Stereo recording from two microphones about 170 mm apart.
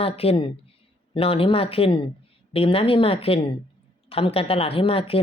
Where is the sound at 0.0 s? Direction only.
35° left (ahead or behind).